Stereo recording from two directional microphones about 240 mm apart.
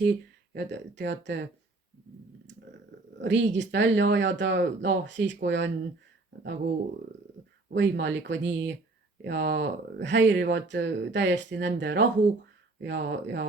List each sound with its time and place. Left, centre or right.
0.0 s speech: right
2.5 s speech: right
7.7 s speech: right